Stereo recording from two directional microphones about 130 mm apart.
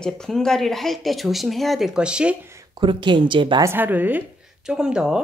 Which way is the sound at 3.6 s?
15° right (ahead or behind).